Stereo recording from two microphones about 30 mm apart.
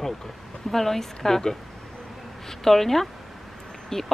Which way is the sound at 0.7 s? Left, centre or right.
Centre.